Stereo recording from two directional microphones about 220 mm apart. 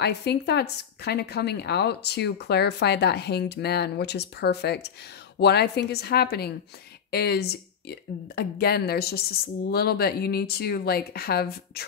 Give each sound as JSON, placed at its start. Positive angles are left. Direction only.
{"t": 0.0, "sound": "speech", "side_deg": 50}